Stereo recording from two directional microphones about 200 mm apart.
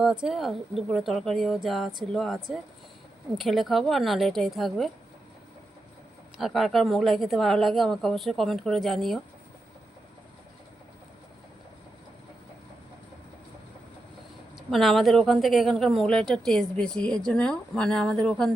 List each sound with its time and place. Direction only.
0.0 s speech: 5° right (ahead or behind)
6.3 s speech: centre (ahead or behind)
14.5 s speech: centre (ahead or behind)